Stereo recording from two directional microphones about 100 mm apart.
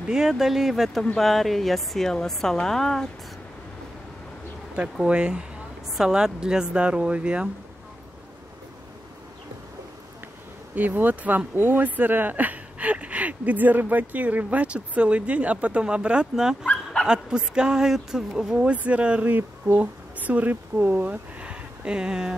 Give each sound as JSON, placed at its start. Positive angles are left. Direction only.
{"t": 0.1, "sound": "a woman's voice", "side_deg": -5}
{"t": 4.7, "sound": "speech", "side_deg": -10}
{"t": 10.7, "sound": "speech", "side_deg": -20}